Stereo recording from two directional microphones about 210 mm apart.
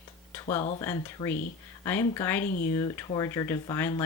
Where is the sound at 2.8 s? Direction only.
15° left (ahead or behind).